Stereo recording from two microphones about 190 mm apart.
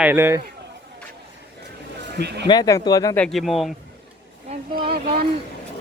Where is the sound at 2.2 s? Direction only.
60° right (ahead or behind).